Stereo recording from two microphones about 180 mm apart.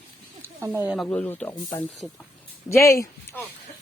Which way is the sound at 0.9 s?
Centre (ahead or behind).